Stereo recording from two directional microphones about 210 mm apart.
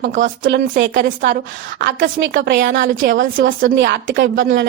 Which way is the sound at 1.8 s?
55° right (ahead or behind).